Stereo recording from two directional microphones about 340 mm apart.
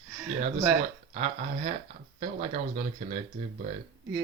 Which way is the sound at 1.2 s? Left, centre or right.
Centre.